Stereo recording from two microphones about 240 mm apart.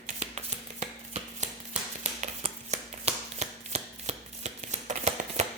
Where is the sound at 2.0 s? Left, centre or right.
Right.